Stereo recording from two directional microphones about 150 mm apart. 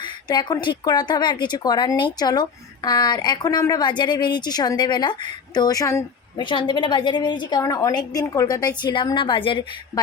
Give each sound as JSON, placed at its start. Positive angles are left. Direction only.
{"t": 0.0, "sound": "speech", "side_deg": 30}
{"t": 6.4, "sound": "speech", "side_deg": 30}